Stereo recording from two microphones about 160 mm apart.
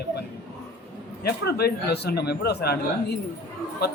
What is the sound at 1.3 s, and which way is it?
A man's voice, 80° left.